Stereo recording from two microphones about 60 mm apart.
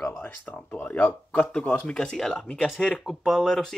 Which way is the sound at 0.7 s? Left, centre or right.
Left.